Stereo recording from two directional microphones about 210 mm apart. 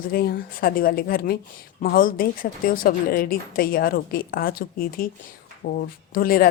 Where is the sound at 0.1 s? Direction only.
45° left (ahead or behind).